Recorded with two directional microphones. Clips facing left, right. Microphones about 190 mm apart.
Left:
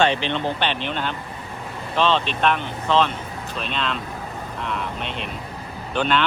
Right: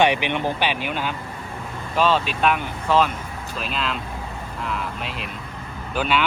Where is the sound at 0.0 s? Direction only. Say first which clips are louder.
Right 1 dB; 15° right (ahead or behind).